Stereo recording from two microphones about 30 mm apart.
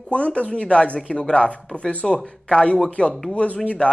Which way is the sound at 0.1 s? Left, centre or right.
Left.